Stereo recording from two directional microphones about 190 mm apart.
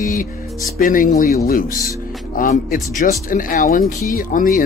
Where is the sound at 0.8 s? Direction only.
45° left (ahead or behind).